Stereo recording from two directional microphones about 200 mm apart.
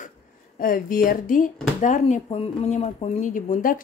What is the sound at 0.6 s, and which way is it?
Speech, 45° left (ahead or behind).